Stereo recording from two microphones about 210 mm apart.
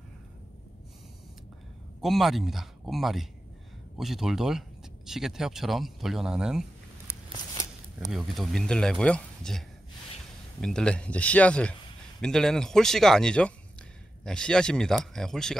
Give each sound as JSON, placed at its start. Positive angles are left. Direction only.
{"t": 2.0, "sound": "speech", "side_deg": 0}
{"t": 7.1, "sound": "a sound", "side_deg": 15}
{"t": 8.1, "sound": "speech", "side_deg": 0}